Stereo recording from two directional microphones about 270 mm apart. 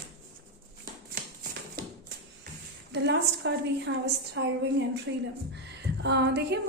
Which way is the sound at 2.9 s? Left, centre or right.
Right.